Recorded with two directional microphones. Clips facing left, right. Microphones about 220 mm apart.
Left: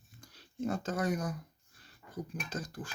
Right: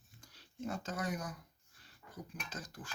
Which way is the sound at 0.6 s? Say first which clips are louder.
Left 7 dB; 45° left (ahead or behind).